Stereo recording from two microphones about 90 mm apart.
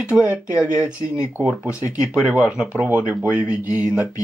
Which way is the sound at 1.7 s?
35° left (ahead or behind).